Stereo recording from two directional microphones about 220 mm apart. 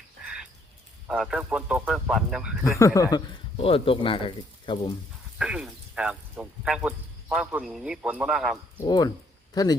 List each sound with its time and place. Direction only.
0.2 s a sound: 5° right (ahead or behind)
1.0 s speech: 5° right (ahead or behind)
2.7 s speech: 15° left (ahead or behind)
3.6 s speech: 25° left (ahead or behind)
5.4 s speech: 5° right (ahead or behind)
8.8 s speech: 15° left (ahead or behind)